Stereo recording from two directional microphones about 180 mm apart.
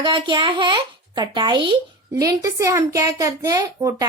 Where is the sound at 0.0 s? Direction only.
25° right (ahead or behind).